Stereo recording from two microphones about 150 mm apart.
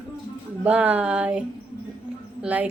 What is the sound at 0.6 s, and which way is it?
Speech, 10° right (ahead or behind).